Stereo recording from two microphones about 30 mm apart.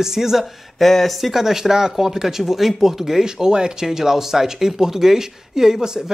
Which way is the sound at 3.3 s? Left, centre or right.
Right.